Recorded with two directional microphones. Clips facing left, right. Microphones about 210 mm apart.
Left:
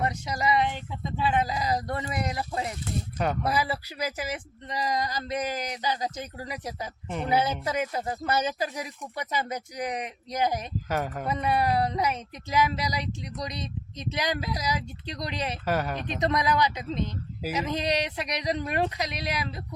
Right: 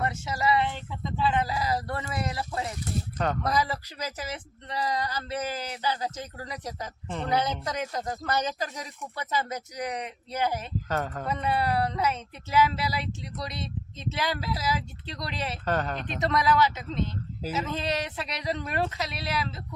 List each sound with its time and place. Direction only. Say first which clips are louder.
0.0 s speech: even; 15° left (ahead or behind)